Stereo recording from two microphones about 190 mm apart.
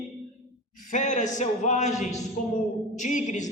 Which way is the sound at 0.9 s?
40° left (ahead or behind).